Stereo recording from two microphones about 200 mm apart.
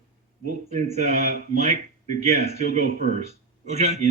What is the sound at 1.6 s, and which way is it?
A man's voice, 35° right (ahead or behind).